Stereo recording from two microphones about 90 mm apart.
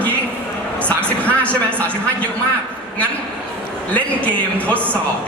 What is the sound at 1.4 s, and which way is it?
Speech, 15° left (ahead or behind).